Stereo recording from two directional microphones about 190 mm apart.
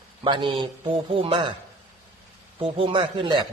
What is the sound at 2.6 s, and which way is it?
Speech, 30° right (ahead or behind).